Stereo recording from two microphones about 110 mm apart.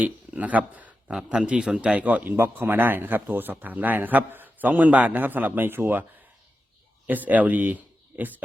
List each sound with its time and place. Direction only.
0.0 s speech: 15° right (ahead or behind)
7.1 s a man's voice: 15° right (ahead or behind)